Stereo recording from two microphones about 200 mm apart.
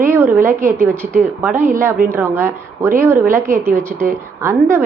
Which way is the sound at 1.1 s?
10° right (ahead or behind).